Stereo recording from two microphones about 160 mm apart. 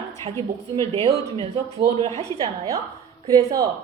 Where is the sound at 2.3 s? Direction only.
25° right (ahead or behind).